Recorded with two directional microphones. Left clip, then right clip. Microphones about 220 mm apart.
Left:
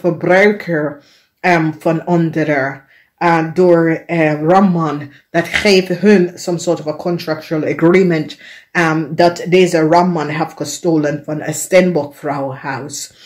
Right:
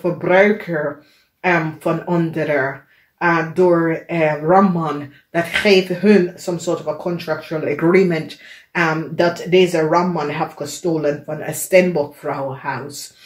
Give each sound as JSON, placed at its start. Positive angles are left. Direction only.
{"t": 0.0, "sound": "speech", "side_deg": 45}